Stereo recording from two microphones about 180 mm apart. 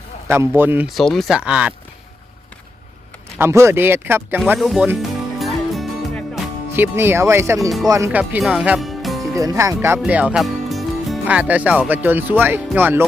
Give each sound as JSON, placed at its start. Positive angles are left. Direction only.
{"t": 0.3, "sound": "speech", "side_deg": -15}
{"t": 0.9, "sound": "speech", "side_deg": 0}
{"t": 3.3, "sound": "speech", "side_deg": -15}
{"t": 5.4, "sound": "music", "side_deg": 0}
{"t": 6.7, "sound": "speech", "side_deg": -10}
{"t": 9.3, "sound": "speech", "side_deg": -20}